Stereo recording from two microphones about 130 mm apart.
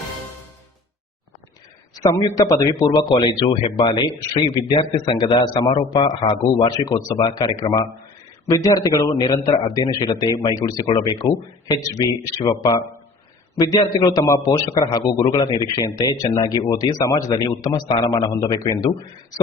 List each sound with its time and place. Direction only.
2.3 s a man's voice: 25° left (ahead or behind)
4.8 s a man's voice: 45° left (ahead or behind)
6.7 s a man's voice: 30° left (ahead or behind)